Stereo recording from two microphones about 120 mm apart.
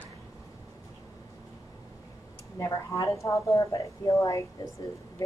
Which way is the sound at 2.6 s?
25° left (ahead or behind).